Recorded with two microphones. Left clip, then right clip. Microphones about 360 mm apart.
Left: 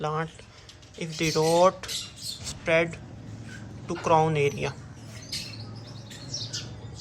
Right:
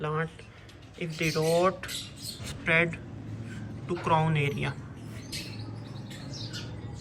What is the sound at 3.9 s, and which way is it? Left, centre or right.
Speech, centre.